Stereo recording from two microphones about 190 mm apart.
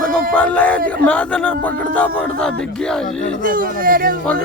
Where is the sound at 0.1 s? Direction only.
5° left (ahead or behind).